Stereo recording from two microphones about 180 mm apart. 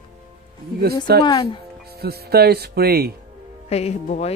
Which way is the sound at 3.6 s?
35° left (ahead or behind).